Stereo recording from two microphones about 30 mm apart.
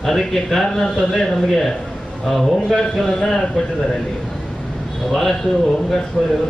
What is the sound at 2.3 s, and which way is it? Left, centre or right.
Speech, centre.